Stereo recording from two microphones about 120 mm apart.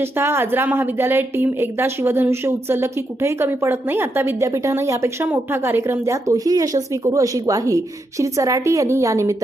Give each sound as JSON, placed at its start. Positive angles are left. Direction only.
{"t": 0.2, "sound": "a woman's voice", "side_deg": -20}